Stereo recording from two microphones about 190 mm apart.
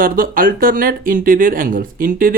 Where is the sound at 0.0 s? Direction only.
50° right (ahead or behind).